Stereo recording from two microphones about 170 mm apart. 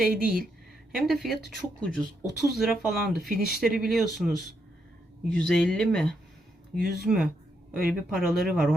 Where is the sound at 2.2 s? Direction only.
90° left.